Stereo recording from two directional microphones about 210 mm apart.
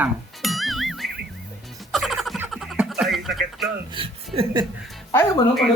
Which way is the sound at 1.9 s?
Centre (ahead or behind).